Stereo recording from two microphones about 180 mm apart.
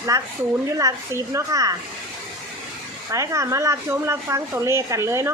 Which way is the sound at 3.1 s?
15° right (ahead or behind).